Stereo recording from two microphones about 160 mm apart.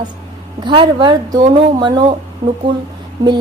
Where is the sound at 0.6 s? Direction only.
30° right (ahead or behind).